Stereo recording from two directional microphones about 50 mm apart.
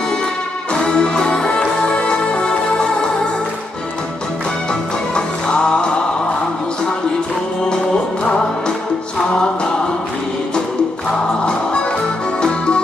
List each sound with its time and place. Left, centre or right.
0.7 s music: left
4.7 s music: centre
8.2 s music: centre
11.4 s music: left